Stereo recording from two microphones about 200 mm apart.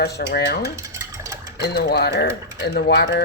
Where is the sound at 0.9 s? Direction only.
15° right (ahead or behind).